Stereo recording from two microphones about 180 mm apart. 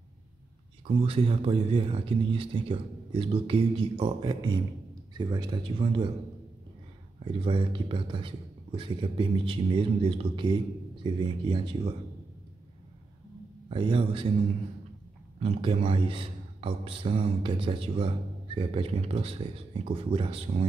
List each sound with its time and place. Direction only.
0.8 s speech: 30° right (ahead or behind)
7.2 s speech: 30° right (ahead or behind)
13.7 s speech: 30° right (ahead or behind)
15.4 s speech: 30° right (ahead or behind)